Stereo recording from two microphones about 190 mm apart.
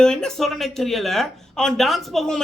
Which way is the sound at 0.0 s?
5° left (ahead or behind).